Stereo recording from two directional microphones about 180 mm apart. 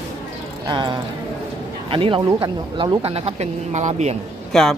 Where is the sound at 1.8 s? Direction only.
30° right (ahead or behind).